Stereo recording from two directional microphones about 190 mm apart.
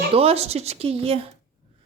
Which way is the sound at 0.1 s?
30° right (ahead or behind).